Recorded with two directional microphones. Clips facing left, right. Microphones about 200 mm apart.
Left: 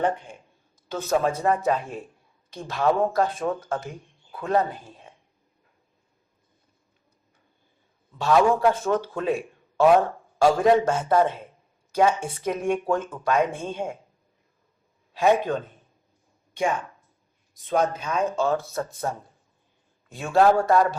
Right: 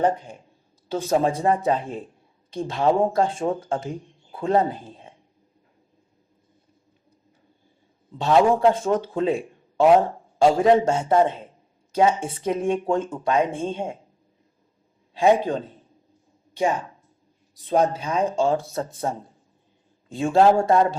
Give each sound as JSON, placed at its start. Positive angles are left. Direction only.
{"t": 0.0, "sound": "speech", "side_deg": -40}
{"t": 8.1, "sound": "speech", "side_deg": -25}
{"t": 15.4, "sound": "speech", "side_deg": -30}